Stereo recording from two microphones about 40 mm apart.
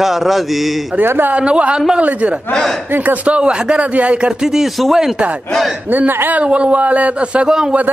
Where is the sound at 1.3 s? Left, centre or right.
Right.